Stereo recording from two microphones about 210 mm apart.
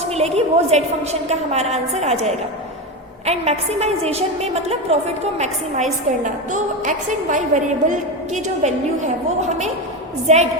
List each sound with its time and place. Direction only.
0.0 s a woman's voice: 30° right (ahead or behind)
10.2 s a woman's voice: 30° right (ahead or behind)